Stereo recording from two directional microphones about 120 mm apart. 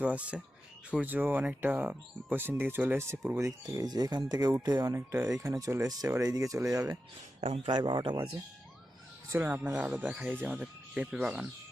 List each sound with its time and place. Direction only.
0.0 s speech: 10° right (ahead or behind)
7.4 s speech: 55° right (ahead or behind)
7.8 s speech: 35° right (ahead or behind)
9.3 s speech: 20° right (ahead or behind)